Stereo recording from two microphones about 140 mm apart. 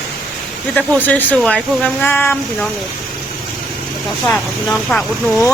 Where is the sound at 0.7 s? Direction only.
10° left (ahead or behind).